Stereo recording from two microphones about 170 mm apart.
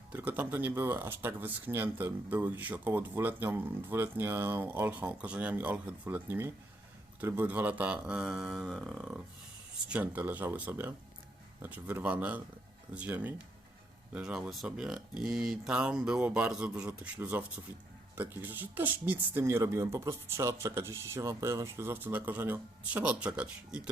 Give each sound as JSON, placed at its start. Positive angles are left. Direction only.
{"t": 0.1, "sound": "speech", "side_deg": -10}